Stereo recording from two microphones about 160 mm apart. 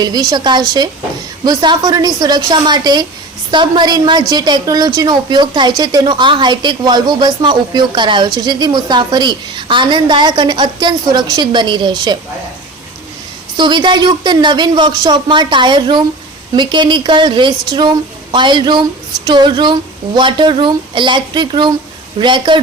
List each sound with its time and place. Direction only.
0.0 s a woman's voice: 25° right (ahead or behind)
13.6 s a woman's voice: 30° right (ahead or behind)